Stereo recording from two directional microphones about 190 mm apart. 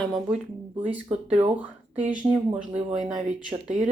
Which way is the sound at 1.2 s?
30° right (ahead or behind).